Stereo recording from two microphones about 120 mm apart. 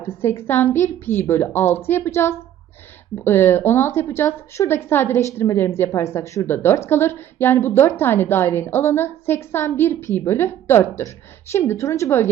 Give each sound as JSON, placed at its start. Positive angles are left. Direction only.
{"t": 0.0, "sound": "a woman's voice", "side_deg": 20}